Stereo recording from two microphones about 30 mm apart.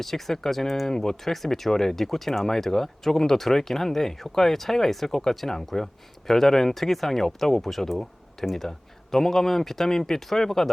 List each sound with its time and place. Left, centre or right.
0.0 s speech: centre
8.7 s speech: left